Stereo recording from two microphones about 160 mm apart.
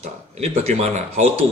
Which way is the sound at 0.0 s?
45° right (ahead or behind).